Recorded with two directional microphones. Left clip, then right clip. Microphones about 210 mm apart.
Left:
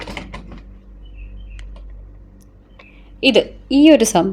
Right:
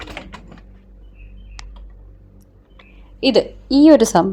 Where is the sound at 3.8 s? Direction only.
5° right (ahead or behind).